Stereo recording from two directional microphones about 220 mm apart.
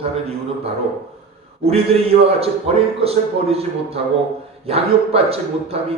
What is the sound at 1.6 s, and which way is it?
Speech, 25° right (ahead or behind).